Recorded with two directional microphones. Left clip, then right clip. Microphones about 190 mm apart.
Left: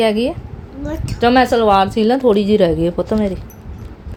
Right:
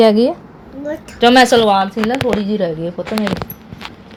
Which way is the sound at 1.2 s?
Centre (ahead or behind).